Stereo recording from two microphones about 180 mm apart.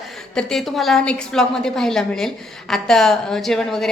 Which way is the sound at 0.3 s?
5° left (ahead or behind).